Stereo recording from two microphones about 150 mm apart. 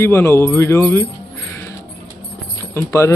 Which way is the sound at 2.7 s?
15° left (ahead or behind).